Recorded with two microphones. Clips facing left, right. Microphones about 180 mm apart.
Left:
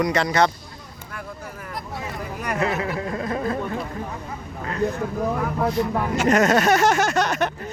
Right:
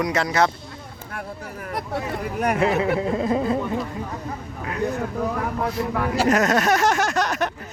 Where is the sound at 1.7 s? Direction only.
65° right (ahead or behind).